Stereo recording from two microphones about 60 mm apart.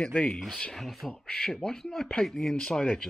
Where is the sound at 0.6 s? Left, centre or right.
Centre.